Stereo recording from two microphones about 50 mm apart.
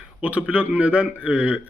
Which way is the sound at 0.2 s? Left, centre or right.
Right.